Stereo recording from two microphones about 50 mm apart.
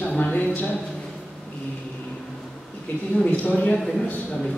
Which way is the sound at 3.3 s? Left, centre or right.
Left.